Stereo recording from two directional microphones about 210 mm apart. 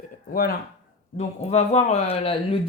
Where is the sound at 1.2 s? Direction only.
30° left (ahead or behind).